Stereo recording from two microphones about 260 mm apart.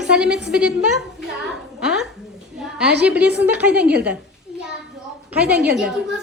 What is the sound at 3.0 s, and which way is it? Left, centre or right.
A woman's voice, centre.